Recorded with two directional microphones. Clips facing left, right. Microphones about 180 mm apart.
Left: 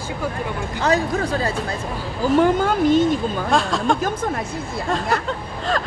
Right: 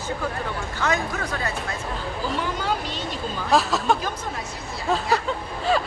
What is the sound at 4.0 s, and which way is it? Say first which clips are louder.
Speech: left 7 dB; 50° left (ahead or behind).